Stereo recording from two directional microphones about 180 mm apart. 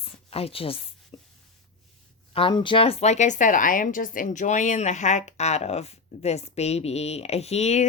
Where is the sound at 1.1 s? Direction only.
30° left (ahead or behind).